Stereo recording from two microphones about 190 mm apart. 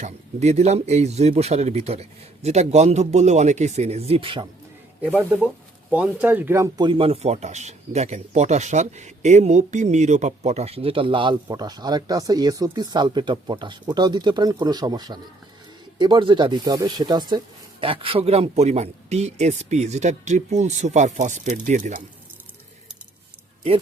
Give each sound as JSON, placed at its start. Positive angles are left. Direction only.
{"t": 0.0, "sound": "speech", "side_deg": -35}
{"t": 5.0, "sound": "speech", "side_deg": -10}